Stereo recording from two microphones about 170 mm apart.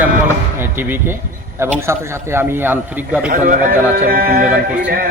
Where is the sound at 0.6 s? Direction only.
15° right (ahead or behind).